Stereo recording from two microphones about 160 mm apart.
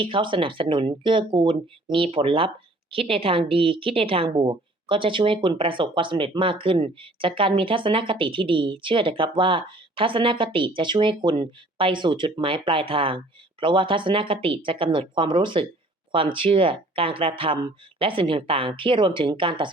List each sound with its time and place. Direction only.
0.0 s a woman's voice: 30° right (ahead or behind)